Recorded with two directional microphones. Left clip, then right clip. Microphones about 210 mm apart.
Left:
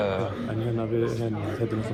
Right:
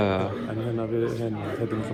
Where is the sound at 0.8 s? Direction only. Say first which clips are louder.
Even; 5° right (ahead or behind).